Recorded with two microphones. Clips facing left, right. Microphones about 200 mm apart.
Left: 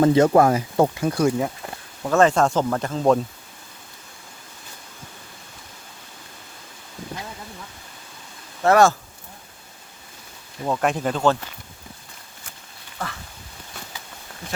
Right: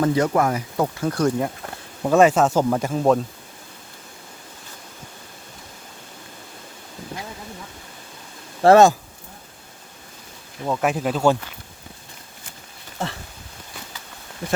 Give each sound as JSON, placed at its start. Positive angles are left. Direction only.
{"t": 0.0, "sound": "speech", "side_deg": 25}
{"t": 0.9, "sound": "speech", "side_deg": 10}
{"t": 2.0, "sound": "speech", "side_deg": -10}
{"t": 8.6, "sound": "speech", "side_deg": -25}
{"t": 10.6, "sound": "speech", "side_deg": 0}
{"t": 13.0, "sound": "speech", "side_deg": -25}